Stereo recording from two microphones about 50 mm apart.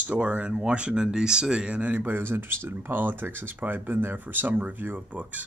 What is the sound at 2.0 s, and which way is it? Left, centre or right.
Speech, right.